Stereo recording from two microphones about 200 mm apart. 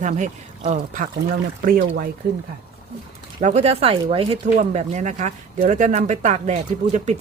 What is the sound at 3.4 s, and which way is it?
Speech, 35° right (ahead or behind).